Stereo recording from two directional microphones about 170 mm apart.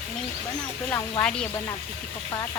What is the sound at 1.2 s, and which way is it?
Speech, 5° left (ahead or behind).